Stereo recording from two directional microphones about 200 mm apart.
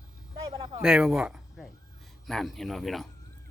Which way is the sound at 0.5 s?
25° right (ahead or behind).